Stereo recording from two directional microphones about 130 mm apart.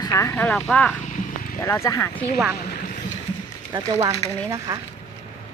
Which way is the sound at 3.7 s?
30° right (ahead or behind).